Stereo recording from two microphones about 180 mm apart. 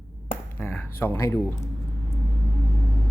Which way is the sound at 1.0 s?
15° left (ahead or behind).